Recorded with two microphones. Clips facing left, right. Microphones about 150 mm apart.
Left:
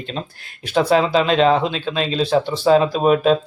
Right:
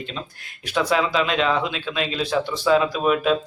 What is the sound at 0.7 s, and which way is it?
A man's voice, 35° left (ahead or behind).